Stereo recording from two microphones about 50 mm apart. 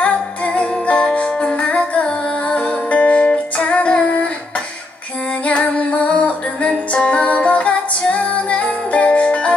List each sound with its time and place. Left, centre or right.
0.0 s music: left
5.4 s music: left